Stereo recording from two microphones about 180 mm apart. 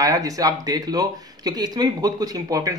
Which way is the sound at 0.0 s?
20° right (ahead or behind).